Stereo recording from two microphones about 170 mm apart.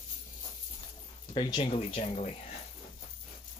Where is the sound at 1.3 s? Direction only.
25° left (ahead or behind).